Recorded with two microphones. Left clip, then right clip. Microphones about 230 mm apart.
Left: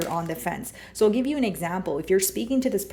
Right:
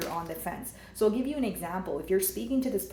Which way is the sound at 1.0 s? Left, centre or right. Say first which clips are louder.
Left 6 dB; left.